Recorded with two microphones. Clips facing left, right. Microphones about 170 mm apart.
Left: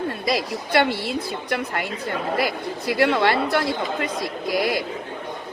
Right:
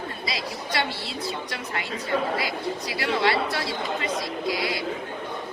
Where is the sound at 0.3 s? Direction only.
55° left (ahead or behind).